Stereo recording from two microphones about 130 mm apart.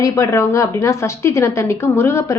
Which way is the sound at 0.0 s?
20° left (ahead or behind).